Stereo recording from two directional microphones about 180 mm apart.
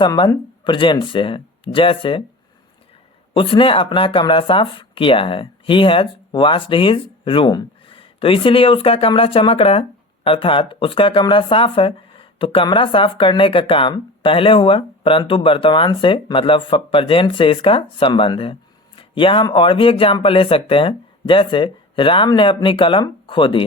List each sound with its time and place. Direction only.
0.0 s speech: 25° left (ahead or behind)
3.3 s speech: 30° left (ahead or behind)